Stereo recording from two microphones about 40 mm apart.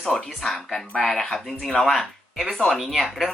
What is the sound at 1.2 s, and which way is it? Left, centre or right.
Speech, centre.